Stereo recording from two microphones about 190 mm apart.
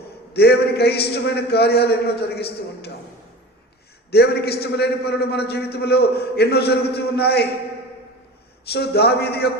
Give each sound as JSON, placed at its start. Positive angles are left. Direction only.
{"t": 0.3, "sound": "a man's voice", "side_deg": 60}
{"t": 4.1, "sound": "a man's voice", "side_deg": 60}
{"t": 8.7, "sound": "a man's voice", "side_deg": 60}